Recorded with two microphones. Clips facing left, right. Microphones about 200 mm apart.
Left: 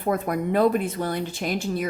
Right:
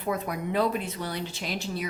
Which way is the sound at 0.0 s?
50° left (ahead or behind).